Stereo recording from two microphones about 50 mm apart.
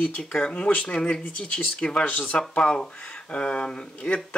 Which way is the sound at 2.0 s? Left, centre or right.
Left.